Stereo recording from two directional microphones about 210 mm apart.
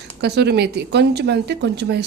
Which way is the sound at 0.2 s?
50° right (ahead or behind).